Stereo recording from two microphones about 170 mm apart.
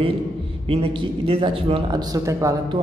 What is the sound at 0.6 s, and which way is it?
A man's voice, 35° right (ahead or behind).